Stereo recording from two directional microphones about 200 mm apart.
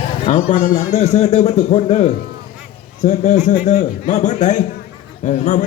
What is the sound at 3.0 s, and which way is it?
A man's voice, 35° left (ahead or behind).